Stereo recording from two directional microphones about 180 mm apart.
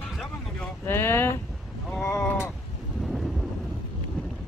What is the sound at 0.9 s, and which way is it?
Speech, 15° left (ahead or behind).